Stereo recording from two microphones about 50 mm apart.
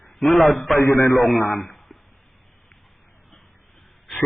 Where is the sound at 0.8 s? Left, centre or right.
Left.